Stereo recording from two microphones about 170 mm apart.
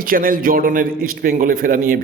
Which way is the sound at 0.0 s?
55° right (ahead or behind).